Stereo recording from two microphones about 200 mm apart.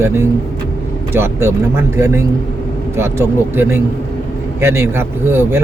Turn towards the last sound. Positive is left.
turn(degrees=-10)  # may be behind; listen again after turning